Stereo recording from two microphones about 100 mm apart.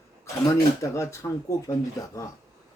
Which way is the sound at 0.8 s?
30° left (ahead or behind).